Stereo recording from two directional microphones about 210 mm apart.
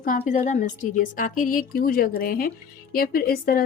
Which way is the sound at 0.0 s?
40° left (ahead or behind).